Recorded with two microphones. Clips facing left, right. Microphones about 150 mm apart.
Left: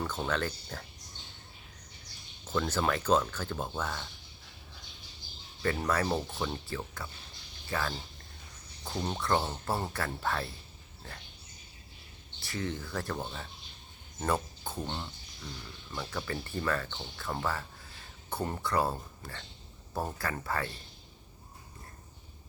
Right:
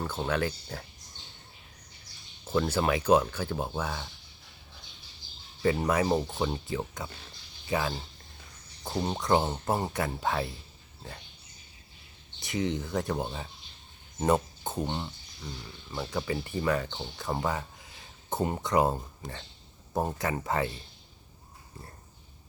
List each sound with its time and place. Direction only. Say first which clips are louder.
0.0 s speech: right 3 dB; 10° right (ahead or behind)
2.5 s speech: right 4 dB; 10° right (ahead or behind)
5.6 s speech: right 4 dB; 15° right (ahead or behind)
12.4 s speech: right 6 dB; 15° right (ahead or behind)